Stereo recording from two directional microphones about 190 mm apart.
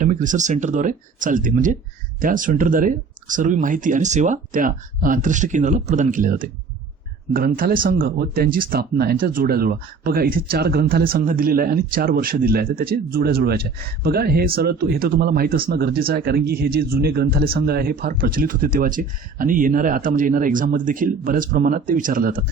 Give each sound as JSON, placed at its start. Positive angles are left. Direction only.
{"t": 0.0, "sound": "speech", "side_deg": -40}